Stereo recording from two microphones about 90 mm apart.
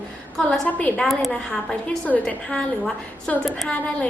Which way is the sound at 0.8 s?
15° left (ahead or behind).